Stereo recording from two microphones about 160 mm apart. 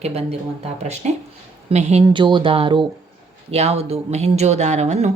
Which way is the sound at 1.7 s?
45° right (ahead or behind).